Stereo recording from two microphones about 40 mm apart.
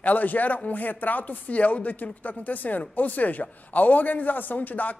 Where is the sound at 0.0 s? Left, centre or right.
Left.